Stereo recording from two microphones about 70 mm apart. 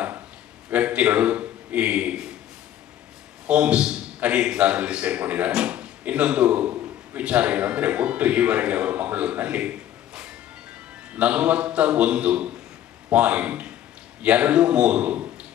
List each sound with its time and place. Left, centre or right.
0.7 s a man's voice: right
3.4 s a man's voice: centre